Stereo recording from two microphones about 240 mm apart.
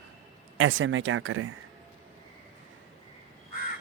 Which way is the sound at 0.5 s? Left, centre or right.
Right.